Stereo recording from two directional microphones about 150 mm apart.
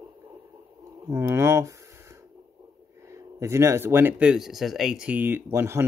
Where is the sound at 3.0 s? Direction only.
20° right (ahead or behind).